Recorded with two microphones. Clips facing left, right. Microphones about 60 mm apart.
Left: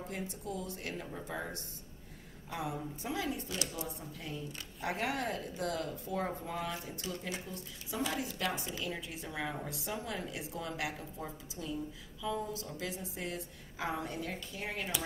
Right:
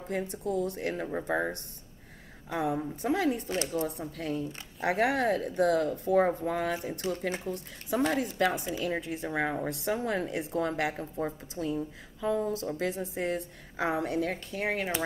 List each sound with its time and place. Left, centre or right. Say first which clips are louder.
0.1 s a woman's voice: right 12 dB; right